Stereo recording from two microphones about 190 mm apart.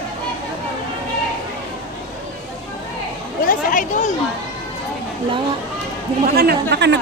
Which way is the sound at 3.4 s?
45° left (ahead or behind).